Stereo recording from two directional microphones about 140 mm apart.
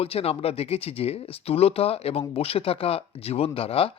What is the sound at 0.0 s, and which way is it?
A man's voice, 45° left (ahead or behind).